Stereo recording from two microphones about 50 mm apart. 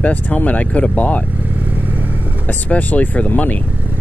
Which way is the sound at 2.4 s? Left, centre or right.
Left.